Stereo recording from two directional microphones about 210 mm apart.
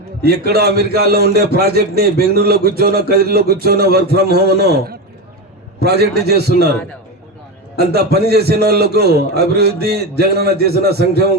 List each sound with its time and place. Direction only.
0.2 s a man's voice: 50° right (ahead or behind)
7.8 s a man's voice: 50° right (ahead or behind)